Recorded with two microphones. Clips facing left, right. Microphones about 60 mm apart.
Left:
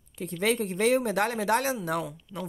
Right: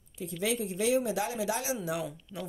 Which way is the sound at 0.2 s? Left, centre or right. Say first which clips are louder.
Left 5 dB; left.